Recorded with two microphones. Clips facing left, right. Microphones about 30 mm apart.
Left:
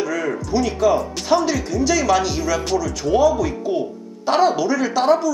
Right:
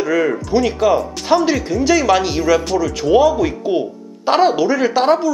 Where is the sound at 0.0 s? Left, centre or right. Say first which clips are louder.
Right 6 dB; centre.